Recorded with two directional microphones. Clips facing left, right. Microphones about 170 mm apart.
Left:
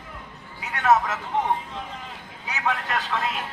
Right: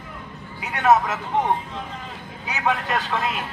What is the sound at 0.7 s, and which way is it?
Speech, 15° right (ahead or behind).